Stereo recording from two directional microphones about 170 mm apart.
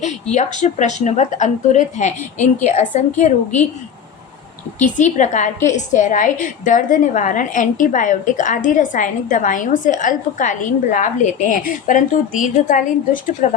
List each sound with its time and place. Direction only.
0.3 s a woman's voice: 45° left (ahead or behind)
4.8 s a woman's voice: 45° left (ahead or behind)